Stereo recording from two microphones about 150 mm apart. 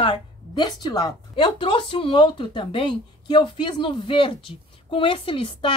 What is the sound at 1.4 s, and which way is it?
Speech, 35° left (ahead or behind).